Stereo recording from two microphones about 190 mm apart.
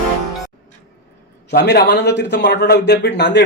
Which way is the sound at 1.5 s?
60° left (ahead or behind).